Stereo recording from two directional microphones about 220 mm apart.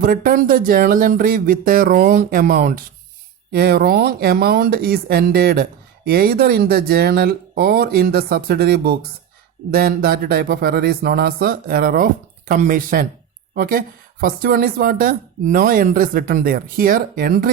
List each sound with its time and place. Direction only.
0.0 s speech: 40° right (ahead or behind)